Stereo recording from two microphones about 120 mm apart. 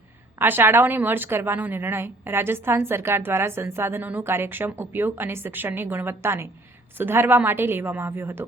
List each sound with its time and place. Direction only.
0.3 s a woman's voice: 15° right (ahead or behind)